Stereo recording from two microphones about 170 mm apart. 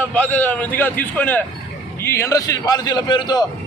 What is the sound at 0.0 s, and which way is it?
A man's voice, 10° left (ahead or behind).